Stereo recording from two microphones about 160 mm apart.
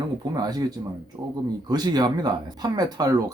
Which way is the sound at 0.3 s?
25° right (ahead or behind).